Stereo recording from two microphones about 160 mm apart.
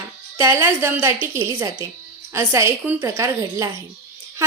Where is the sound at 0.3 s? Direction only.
15° right (ahead or behind).